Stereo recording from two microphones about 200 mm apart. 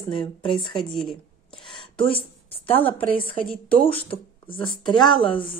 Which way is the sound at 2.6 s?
10° left (ahead or behind).